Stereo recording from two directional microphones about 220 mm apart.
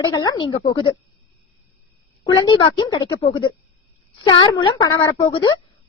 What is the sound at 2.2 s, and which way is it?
A woman's voice, 20° left (ahead or behind).